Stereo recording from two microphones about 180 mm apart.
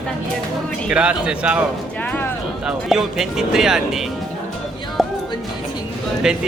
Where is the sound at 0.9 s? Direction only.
5° right (ahead or behind).